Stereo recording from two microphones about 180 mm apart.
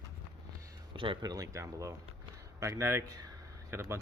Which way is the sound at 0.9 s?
25° right (ahead or behind).